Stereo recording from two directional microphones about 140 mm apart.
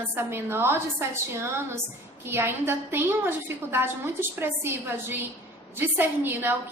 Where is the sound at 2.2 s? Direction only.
15° right (ahead or behind).